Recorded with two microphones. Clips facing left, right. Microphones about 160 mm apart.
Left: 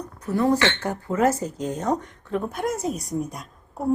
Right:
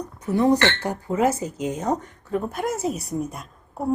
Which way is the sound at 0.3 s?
15° right (ahead or behind).